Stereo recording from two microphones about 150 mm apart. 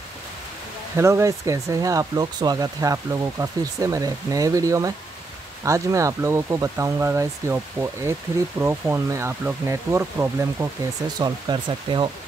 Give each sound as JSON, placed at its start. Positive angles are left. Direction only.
{"t": 0.9, "sound": "speech", "side_deg": -20}
{"t": 11.1, "sound": "speech", "side_deg": -30}